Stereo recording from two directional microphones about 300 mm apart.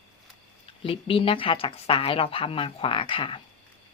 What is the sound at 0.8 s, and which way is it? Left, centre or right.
Speech, centre.